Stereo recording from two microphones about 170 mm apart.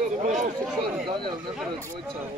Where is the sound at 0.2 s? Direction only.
45° right (ahead or behind).